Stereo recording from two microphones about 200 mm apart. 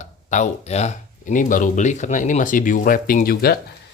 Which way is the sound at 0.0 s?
35° left (ahead or behind).